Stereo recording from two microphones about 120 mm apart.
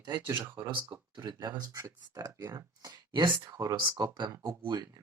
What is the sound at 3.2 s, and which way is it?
Speech, 40° right (ahead or behind).